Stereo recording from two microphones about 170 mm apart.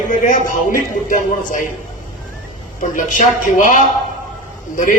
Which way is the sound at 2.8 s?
50° left (ahead or behind).